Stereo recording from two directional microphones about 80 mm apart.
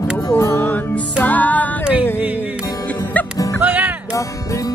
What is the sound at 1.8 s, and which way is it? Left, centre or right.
Music, centre.